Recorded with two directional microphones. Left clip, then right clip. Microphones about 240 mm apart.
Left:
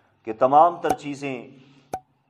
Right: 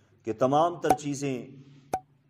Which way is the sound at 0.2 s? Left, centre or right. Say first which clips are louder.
Left 8 dB; right.